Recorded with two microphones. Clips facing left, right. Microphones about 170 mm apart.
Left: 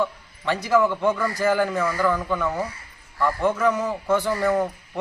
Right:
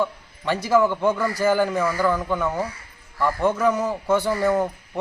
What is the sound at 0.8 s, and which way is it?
A man's voice, 10° right (ahead or behind).